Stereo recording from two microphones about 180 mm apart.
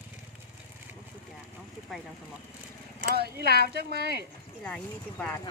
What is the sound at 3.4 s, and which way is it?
Speech, 60° right (ahead or behind).